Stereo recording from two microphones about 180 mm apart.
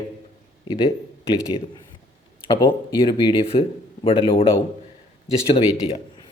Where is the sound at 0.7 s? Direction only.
30° left (ahead or behind).